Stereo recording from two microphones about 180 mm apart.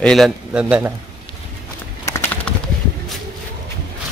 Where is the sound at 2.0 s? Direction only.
15° left (ahead or behind).